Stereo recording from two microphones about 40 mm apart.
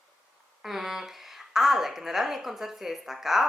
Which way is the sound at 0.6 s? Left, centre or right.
Centre.